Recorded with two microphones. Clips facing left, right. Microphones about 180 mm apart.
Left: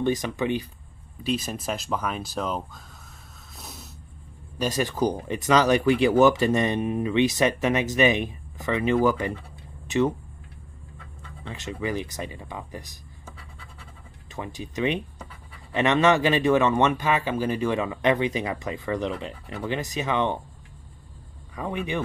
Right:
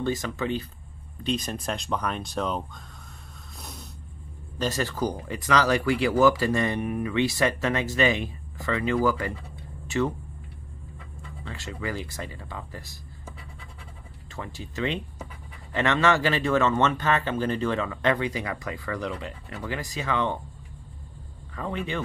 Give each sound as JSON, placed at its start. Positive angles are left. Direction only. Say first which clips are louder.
{"t": 0.0, "sound": "speech", "louder": "left 3 dB", "side_deg": 15}
{"t": 1.2, "sound": "speech", "louder": "left 1 dB", "side_deg": 5}
{"t": 3.5, "sound": "a sound", "louder": "even", "side_deg": 0}
{"t": 4.6, "sound": "speech", "louder": "left 2 dB", "side_deg": 15}
{"t": 11.4, "sound": "speech", "louder": "left 3 dB", "side_deg": 20}
{"t": 14.3, "sound": "speech", "louder": "left 3 dB", "side_deg": 15}
{"t": 21.5, "sound": "speech", "louder": "left 2 dB", "side_deg": 15}